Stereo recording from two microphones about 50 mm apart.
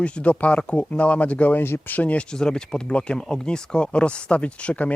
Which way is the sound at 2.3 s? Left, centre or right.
Centre.